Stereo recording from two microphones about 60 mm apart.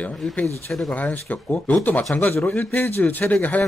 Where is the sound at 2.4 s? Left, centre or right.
Left.